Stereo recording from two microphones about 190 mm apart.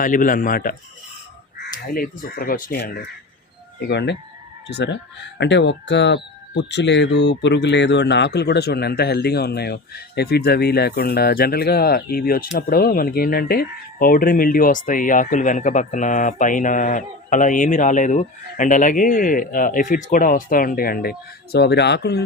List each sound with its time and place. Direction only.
0.0 s speech: 45° left (ahead or behind)
3.8 s speech: 60° left (ahead or behind)